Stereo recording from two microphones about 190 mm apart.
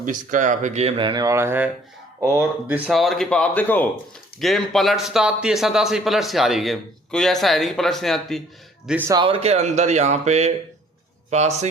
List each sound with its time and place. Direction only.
0.0 s speech: 40° right (ahead or behind); by 8.4 s centre (ahead or behind)
8.9 s a man's voice: 10° right (ahead or behind)
9.1 s speech: 25° right (ahead or behind)